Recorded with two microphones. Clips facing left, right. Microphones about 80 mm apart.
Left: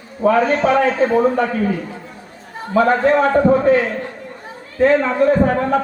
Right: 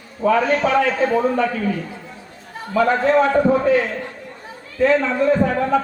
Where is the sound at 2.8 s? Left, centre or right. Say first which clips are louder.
Left 2 dB; left.